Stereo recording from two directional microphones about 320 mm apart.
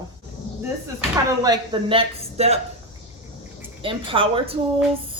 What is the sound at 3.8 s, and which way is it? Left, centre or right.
Speech, centre.